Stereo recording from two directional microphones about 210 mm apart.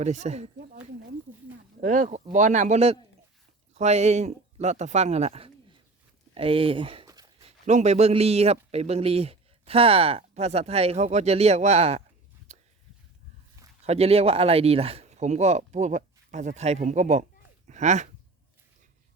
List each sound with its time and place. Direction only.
0.0 s speech: 35° right (ahead or behind)
1.8 s speech: 35° right (ahead or behind)
6.3 s a sound: 25° right (ahead or behind)
7.4 s a man's voice: 30° right (ahead or behind)
12.5 s a sound: 30° right (ahead or behind)
13.8 s speech: 30° right (ahead or behind)